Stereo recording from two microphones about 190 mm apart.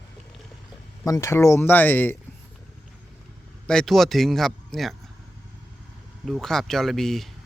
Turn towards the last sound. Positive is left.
turn(degrees=0)  # may be behind; listen again after turning